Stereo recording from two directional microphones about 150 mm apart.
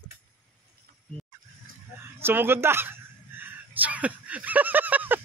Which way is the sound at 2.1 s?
15° right (ahead or behind).